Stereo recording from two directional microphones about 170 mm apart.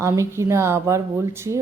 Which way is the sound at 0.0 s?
15° right (ahead or behind).